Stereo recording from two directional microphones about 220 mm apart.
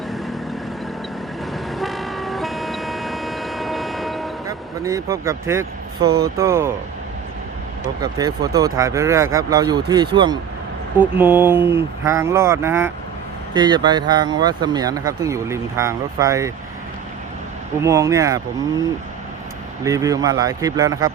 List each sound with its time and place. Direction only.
1.5 s vehicle: centre (ahead or behind)
4.4 s speech: 15° right (ahead or behind)
6.1 s speech: 45° right (ahead or behind)
6.3 s speech: 15° right (ahead or behind)
8.0 s speech: 15° right (ahead or behind)
10.9 s speech: 10° right (ahead or behind)
17.8 s speech: 15° right (ahead or behind)